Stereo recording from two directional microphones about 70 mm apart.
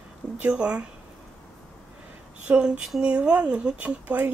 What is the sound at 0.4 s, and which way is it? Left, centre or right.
Speech, right.